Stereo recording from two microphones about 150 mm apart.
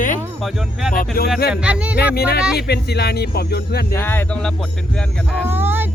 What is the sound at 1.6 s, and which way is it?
Speech, 5° right (ahead or behind).